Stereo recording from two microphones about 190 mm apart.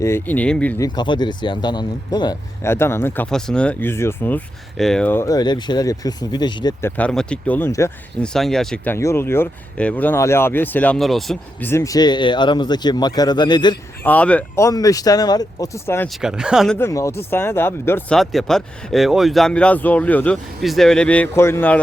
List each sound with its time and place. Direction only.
0.0 s speech: 10° left (ahead or behind)
0.9 s speech: 25° left (ahead or behind)
6.9 s speech: 5° left (ahead or behind)
8.3 s speech: centre (ahead or behind)
11.7 s speech: 15° left (ahead or behind)
14.0 s speech: 10° left (ahead or behind)
16.2 s speech: 5° right (ahead or behind)
16.7 s speech: 15° left (ahead or behind)
18.2 s speech: centre (ahead or behind)